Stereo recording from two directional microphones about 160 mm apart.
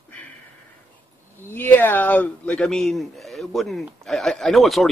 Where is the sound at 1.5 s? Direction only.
10° left (ahead or behind).